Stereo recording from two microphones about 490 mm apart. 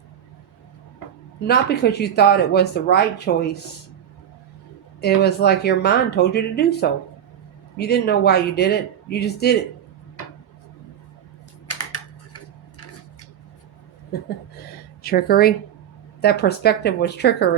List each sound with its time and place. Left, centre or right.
1.5 s speech: centre
4.9 s speech: centre
11.7 s typing: left
14.1 s chuckle: centre
15.0 s a woman's voice: centre